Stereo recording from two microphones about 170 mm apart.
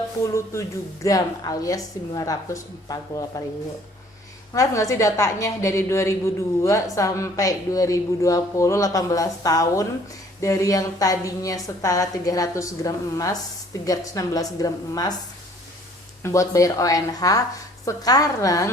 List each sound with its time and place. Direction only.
0.2 s a woman's voice: 15° left (ahead or behind)
4.5 s a woman's voice: 20° left (ahead or behind)
16.2 s a woman's voice: 20° left (ahead or behind)